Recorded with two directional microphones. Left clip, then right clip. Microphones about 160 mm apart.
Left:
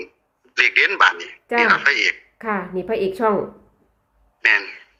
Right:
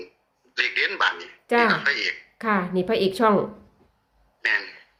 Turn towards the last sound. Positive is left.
turn(degrees=10)  # may be behind; listen again after turning